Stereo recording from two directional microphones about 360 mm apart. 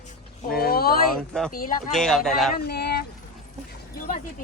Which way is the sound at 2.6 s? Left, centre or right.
Left.